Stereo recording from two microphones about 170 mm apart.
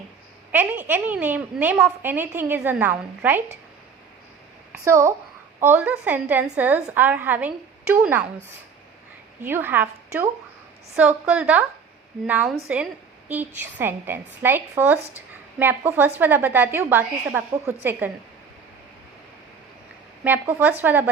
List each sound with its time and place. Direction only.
0.5 s a woman's voice: 10° right (ahead or behind)
4.7 s a child's voice: 15° right (ahead or behind)
9.4 s a woman's voice: 10° right (ahead or behind)
20.2 s a woman's voice: 10° right (ahead or behind)